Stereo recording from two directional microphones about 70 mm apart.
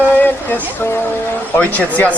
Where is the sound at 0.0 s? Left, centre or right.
Left.